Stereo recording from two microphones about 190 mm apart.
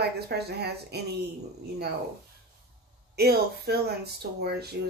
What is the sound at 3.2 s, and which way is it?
Speech, 55° right (ahead or behind).